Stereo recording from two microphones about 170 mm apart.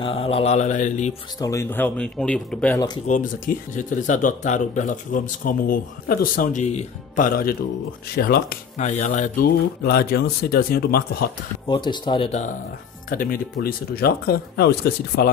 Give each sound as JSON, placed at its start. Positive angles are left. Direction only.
{"t": 0.0, "sound": "mantra", "side_deg": 35}
{"t": 1.4, "sound": "speech", "side_deg": 15}
{"t": 3.1, "sound": "speech", "side_deg": 50}
{"t": 6.6, "sound": "speech", "side_deg": 40}
{"t": 8.7, "sound": "speech", "side_deg": 45}
{"t": 11.6, "sound": "speech", "side_deg": 25}
{"t": 13.1, "sound": "speech", "side_deg": 55}